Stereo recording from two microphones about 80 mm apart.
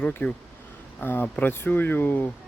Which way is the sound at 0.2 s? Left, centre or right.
Left.